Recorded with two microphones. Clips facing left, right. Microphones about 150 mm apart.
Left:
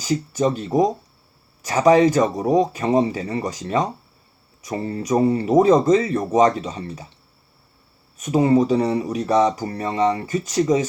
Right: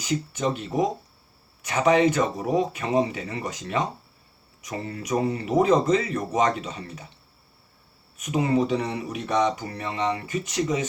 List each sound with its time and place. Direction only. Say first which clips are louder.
0.0 s speech: left 5 dB; 35° left (ahead or behind)
8.2 s speech: left 6 dB; 35° left (ahead or behind)